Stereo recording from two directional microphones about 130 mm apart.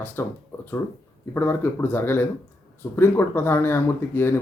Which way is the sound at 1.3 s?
15° left (ahead or behind).